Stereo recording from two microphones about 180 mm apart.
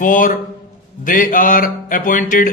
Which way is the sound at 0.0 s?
45° left (ahead or behind).